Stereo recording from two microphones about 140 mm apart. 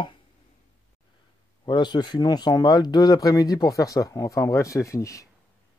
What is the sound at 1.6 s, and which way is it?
Speech, 30° left (ahead or behind).